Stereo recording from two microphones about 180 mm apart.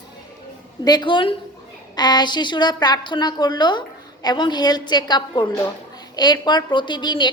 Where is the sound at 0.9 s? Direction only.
25° left (ahead or behind).